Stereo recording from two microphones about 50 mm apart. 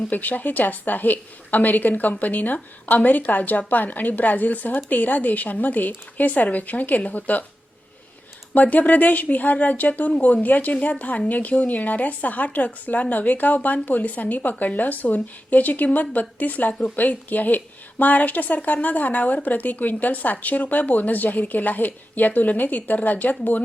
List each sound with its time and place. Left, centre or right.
0.1 s speech: left
8.5 s speech: left